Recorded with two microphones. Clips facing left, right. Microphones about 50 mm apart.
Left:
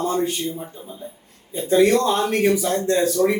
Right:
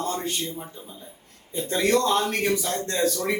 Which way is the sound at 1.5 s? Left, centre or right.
Centre.